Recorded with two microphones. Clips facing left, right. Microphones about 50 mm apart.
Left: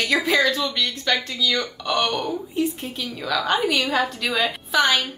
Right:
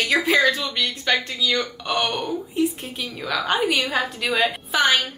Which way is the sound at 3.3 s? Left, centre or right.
Centre.